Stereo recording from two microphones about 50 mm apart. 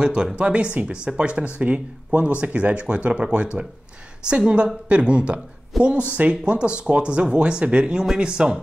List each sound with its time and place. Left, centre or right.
0.0 s speech: centre